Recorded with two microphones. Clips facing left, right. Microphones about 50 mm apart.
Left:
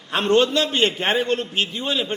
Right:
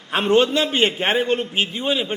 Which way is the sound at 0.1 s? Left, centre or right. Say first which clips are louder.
Right 1 dB; centre.